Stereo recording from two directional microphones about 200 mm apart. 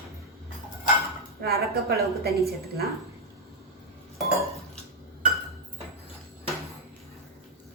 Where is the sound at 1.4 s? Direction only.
50° right (ahead or behind).